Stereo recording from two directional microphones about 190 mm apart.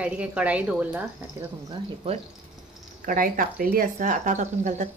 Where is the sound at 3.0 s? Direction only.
45° right (ahead or behind).